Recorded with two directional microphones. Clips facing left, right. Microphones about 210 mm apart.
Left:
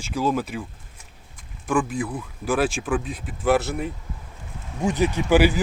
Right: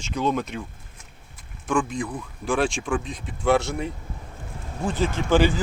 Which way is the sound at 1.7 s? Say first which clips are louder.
Left 1 dB; 5° left (ahead or behind).